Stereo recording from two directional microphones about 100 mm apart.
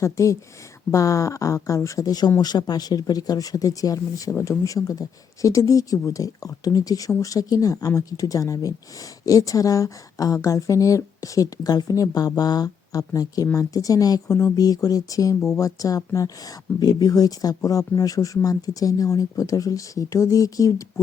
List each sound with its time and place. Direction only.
0.0 s speech: 30° left (ahead or behind)